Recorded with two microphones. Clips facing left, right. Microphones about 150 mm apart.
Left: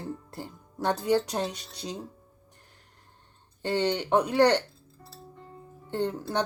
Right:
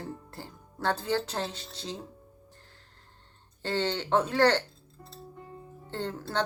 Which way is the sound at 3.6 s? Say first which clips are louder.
Left 3 dB; 15° left (ahead or behind).